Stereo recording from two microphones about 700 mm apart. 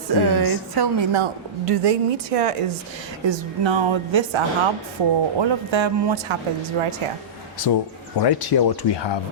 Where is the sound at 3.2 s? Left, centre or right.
Right.